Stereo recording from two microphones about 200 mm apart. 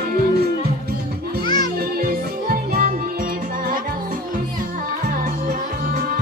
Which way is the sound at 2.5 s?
45° right (ahead or behind).